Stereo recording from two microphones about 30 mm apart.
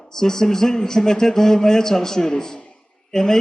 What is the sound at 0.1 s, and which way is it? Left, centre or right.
A man's voice, centre.